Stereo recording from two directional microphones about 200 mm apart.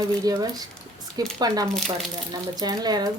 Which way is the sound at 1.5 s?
20° right (ahead or behind).